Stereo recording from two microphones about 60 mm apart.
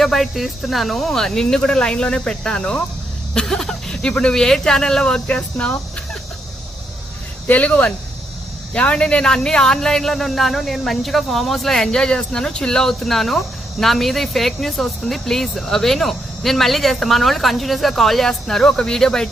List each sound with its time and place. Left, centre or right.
0.0 s speech: centre
7.4 s speech: left; by 19.3 s centre